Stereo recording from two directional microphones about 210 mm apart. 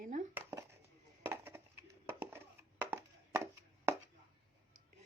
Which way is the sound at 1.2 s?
10° right (ahead or behind).